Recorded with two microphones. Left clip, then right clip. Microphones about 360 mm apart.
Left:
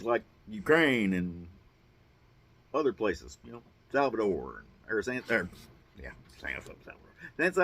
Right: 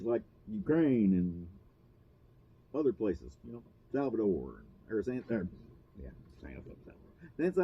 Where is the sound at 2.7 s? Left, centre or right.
Centre.